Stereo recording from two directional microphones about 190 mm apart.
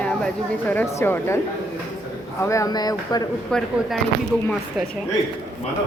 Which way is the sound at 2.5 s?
20° left (ahead or behind).